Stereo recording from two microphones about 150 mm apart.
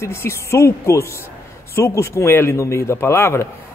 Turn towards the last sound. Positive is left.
turn(degrees=15)  # may be behind; listen again after turning